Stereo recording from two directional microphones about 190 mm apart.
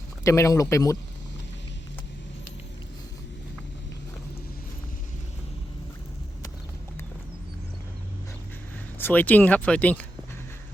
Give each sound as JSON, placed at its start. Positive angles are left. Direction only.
{"t": 0.3, "sound": "speech", "side_deg": 15}
{"t": 9.0, "sound": "speech", "side_deg": 10}